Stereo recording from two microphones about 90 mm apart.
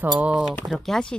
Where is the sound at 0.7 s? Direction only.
5° left (ahead or behind).